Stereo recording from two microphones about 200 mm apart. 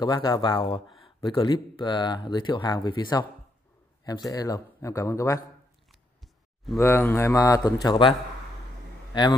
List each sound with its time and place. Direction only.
0.0 s a man's voice: 20° left (ahead or behind)
5.9 s a sound: centre (ahead or behind)
6.8 s a man's voice: 10° left (ahead or behind)
9.1 s speech: 20° left (ahead or behind)